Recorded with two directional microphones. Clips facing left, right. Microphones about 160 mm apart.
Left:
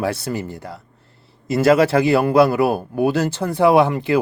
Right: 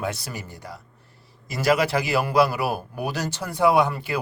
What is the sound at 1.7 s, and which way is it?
Speech, 25° left (ahead or behind).